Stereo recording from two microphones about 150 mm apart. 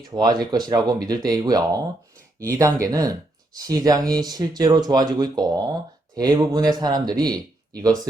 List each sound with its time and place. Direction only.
0.0 s speech: 25° right (ahead or behind)